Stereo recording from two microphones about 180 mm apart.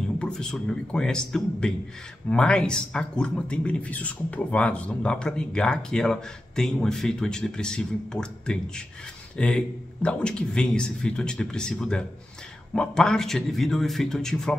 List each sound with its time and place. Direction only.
0.2 s speech: 5° left (ahead or behind)